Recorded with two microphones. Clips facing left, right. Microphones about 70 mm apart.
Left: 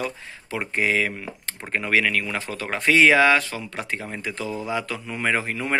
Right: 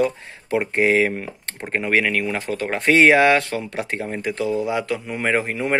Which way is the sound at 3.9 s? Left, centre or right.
Right.